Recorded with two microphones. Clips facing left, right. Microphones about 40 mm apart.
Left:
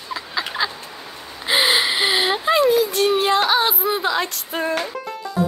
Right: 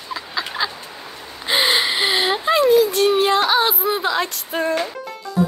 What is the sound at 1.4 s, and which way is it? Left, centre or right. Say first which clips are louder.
Whimper: even; centre.